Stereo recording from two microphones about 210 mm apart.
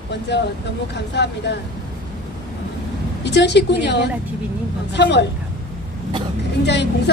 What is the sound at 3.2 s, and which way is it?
Speech, 55° left (ahead or behind).